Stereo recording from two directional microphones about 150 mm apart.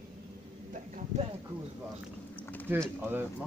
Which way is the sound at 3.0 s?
15° right (ahead or behind).